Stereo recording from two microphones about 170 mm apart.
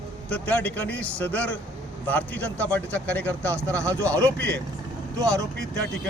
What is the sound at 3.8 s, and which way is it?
Speech, 20° right (ahead or behind).